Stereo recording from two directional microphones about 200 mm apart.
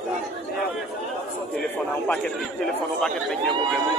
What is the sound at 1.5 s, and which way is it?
A man's voice, 5° left (ahead or behind).